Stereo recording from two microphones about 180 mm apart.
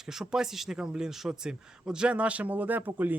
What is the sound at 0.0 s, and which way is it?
Speech, 5° right (ahead or behind).